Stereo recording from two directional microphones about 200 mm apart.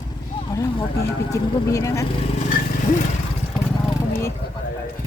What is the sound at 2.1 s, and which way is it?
Vehicle, 30° left (ahead or behind).